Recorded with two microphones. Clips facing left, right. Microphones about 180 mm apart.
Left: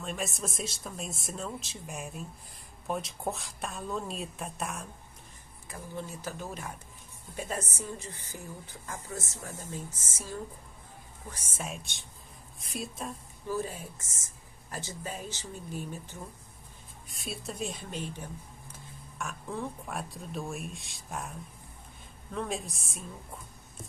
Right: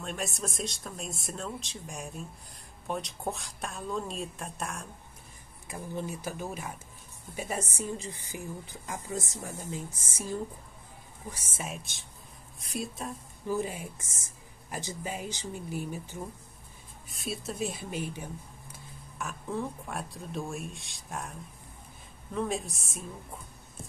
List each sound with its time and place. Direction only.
0.0 s speech: centre (ahead or behind)
5.7 s a woman's voice: 15° right (ahead or behind); by 13.1 s centre (ahead or behind)
13.5 s a woman's voice: 15° right (ahead or behind); by 23.0 s centre (ahead or behind)